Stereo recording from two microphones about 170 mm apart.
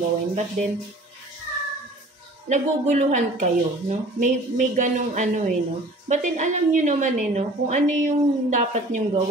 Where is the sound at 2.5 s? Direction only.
45° right (ahead or behind).